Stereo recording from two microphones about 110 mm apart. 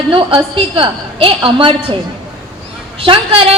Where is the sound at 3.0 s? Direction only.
55° right (ahead or behind).